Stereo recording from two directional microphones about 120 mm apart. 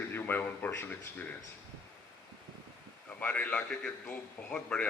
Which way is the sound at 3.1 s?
15° left (ahead or behind).